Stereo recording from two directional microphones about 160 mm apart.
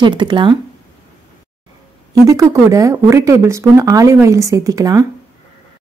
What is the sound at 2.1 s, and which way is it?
Speech, 20° right (ahead or behind).